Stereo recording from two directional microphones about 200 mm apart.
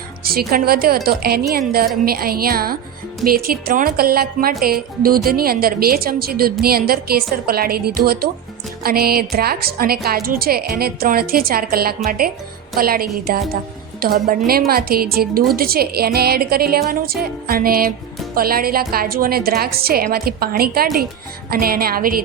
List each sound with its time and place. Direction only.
0.3 s a woman's voice: 50° right (ahead or behind)